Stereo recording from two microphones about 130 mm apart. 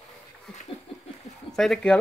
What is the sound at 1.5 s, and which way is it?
Speech, 5° left (ahead or behind).